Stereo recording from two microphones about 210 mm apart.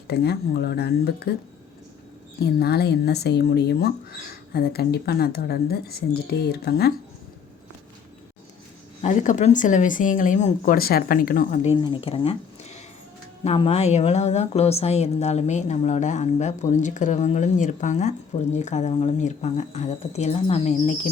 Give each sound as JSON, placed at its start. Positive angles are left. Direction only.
{"t": 0.1, "sound": "speech", "side_deg": 50}
{"t": 2.4, "sound": "speech", "side_deg": 50}
{"t": 9.0, "sound": "a woman's voice", "side_deg": 35}
{"t": 11.8, "sound": "a woman's voice", "side_deg": 25}